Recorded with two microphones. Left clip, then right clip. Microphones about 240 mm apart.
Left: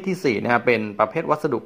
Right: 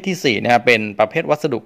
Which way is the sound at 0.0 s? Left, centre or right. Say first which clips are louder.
Right 4 dB; right.